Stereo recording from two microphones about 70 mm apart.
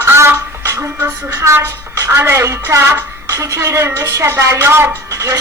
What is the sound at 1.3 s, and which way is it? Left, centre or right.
A woman's voice, right.